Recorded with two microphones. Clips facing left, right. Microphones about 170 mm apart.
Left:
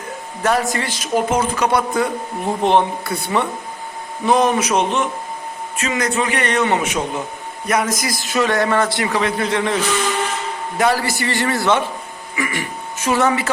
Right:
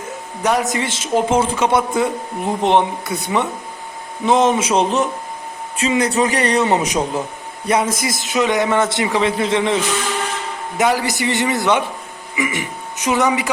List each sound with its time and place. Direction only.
0.4 s a man's voice: 20° right (ahead or behind)